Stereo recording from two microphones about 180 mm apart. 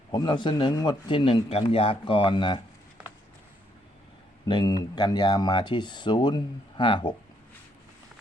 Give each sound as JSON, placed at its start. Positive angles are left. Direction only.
{"t": 0.1, "sound": "speech", "side_deg": 25}
{"t": 4.4, "sound": "speech", "side_deg": 25}